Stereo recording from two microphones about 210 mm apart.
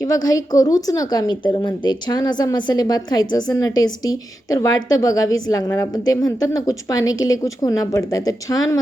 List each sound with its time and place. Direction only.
0.0 s a woman's voice: 15° left (ahead or behind)